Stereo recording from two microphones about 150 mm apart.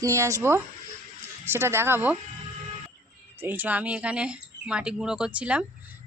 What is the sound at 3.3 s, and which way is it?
Speech, 15° right (ahead or behind).